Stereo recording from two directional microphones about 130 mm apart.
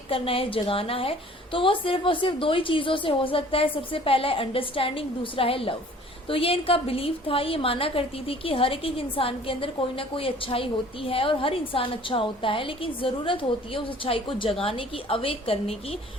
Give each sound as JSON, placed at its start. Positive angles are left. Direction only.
{"t": 0.1, "sound": "a woman's voice", "side_deg": 45}